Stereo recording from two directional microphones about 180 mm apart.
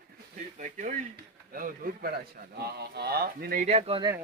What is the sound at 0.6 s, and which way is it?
A man's voice, 45° right (ahead or behind).